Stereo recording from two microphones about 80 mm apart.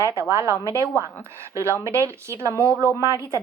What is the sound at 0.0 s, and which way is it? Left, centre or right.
Speech, right.